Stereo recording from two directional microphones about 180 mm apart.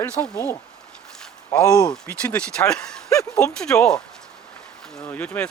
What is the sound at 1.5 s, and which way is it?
Speech, 20° left (ahead or behind).